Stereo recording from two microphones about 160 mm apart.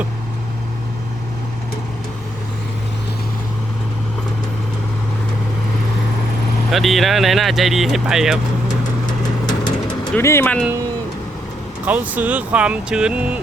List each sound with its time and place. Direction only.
6.7 s speech: centre (ahead or behind)
9.5 s bird: 25° left (ahead or behind)
10.2 s speech: 15° left (ahead or behind)
11.9 s speech: 10° right (ahead or behind)